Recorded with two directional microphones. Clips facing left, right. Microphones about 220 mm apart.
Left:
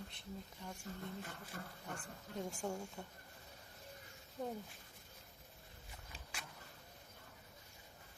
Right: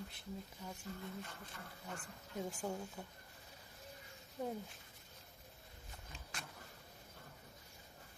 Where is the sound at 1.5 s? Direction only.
45° left (ahead or behind).